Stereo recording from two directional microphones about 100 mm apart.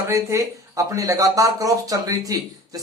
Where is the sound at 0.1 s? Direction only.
30° right (ahead or behind).